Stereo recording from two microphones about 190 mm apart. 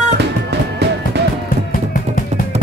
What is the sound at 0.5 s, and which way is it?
Music, 60° right (ahead or behind).